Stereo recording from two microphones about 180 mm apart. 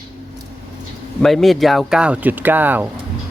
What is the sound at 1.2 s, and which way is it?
Speech, centre (ahead or behind).